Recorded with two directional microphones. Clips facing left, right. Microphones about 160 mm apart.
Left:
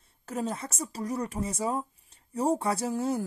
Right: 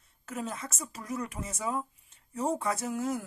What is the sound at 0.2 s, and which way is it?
A woman's voice, 30° left (ahead or behind).